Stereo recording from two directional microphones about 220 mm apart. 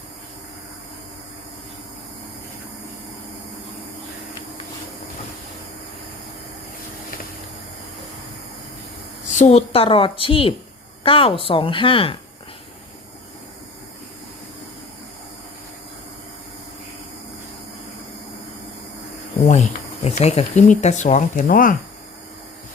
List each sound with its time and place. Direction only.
9.3 s a woman's voice: 30° left (ahead or behind)
19.4 s speech: 30° left (ahead or behind)